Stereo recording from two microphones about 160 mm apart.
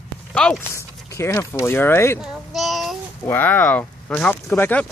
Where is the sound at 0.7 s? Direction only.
15° left (ahead or behind).